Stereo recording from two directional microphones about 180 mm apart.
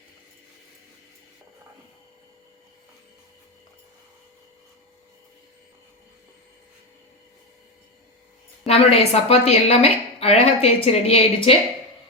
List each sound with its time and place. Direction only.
8.6 s a woman's voice: 35° left (ahead or behind)